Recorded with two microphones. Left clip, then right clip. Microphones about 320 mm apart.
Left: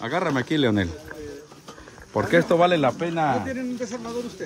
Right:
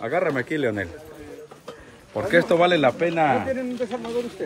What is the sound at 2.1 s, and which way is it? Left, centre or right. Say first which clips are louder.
Speech: even; centre.